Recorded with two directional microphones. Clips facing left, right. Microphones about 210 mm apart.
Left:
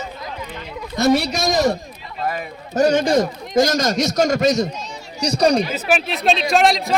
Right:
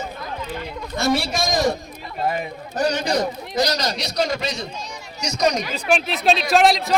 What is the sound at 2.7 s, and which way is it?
A man's voice, 45° left (ahead or behind).